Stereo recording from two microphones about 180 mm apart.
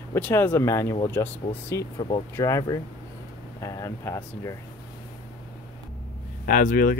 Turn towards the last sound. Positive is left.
turn(degrees=50)  # may be behind; listen again after turning